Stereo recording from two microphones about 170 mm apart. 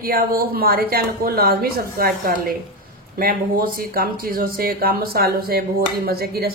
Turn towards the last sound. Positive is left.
turn(degrees=-65)  # may be behind; listen again after turning